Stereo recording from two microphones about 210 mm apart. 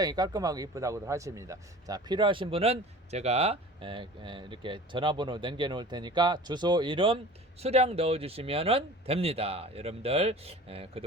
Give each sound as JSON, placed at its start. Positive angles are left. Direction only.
{"t": 0.0, "sound": "speech", "side_deg": -20}